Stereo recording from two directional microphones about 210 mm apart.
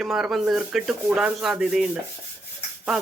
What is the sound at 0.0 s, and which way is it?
Speech, centre (ahead or behind).